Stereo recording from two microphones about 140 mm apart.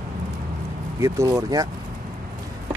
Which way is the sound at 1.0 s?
20° right (ahead or behind).